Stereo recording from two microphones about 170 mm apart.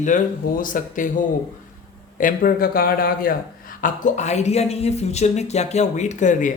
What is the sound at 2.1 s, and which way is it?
Speech, 55° left (ahead or behind).